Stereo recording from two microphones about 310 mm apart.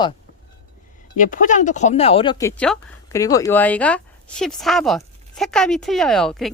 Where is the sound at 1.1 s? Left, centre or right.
Left.